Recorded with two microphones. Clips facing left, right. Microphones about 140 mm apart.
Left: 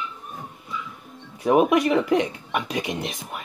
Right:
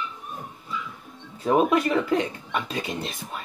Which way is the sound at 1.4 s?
15° left (ahead or behind).